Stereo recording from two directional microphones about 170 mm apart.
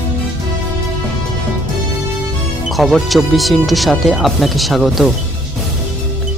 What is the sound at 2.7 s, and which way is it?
Speech, centre (ahead or behind).